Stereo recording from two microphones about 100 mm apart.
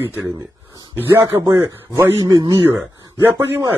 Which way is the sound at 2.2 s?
40° right (ahead or behind).